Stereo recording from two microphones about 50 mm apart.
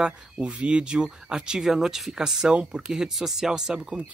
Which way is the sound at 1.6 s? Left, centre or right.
Centre.